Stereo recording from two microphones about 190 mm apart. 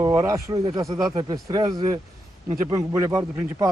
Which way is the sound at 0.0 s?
15° right (ahead or behind).